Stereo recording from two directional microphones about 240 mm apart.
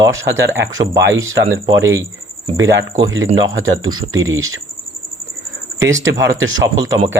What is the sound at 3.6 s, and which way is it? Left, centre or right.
Speech, right.